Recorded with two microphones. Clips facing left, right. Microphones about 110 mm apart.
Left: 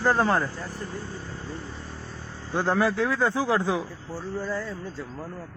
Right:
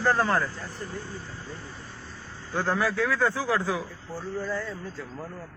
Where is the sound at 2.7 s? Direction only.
25° left (ahead or behind).